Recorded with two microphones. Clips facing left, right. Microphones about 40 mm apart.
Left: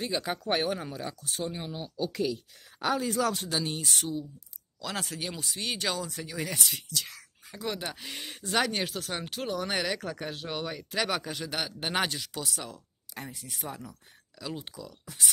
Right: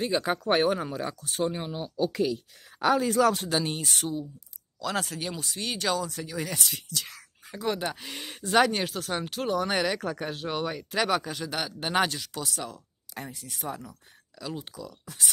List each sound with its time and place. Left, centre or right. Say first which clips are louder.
0.0 s speech: right 5 dB; right
0.9 s speech: right 5 dB; right
1.5 s speech: right 4 dB; right
2.8 s speech: right 5 dB; right
3.3 s speech: right 3 dB; right
4.7 s speech: right 5 dB; centre
7.0 s speech: even; centre
8.7 s speech: right 3 dB; centre
11.1 s speech: right 3 dB; centre
13.3 s speech: right 1 dB; centre
14.4 s speech: right 2 dB; centre